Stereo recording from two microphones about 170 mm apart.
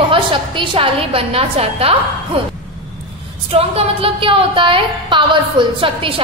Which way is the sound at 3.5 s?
35° right (ahead or behind).